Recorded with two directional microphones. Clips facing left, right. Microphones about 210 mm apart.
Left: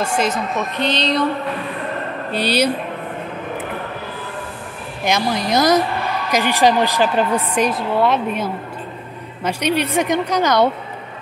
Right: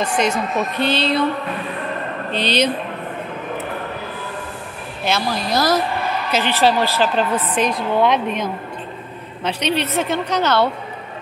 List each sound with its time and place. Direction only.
0.0 s a woman's voice: 5° left (ahead or behind)
2.3 s a woman's voice: 10° left (ahead or behind)
5.0 s a woman's voice: 15° left (ahead or behind)